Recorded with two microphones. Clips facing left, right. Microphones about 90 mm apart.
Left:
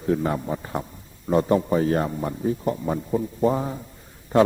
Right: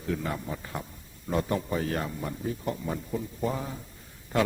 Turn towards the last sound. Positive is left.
turn(degrees=35)  # may be behind; listen again after turning